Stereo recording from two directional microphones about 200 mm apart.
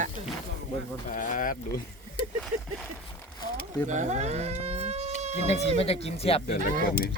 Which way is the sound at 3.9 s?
35° right (ahead or behind).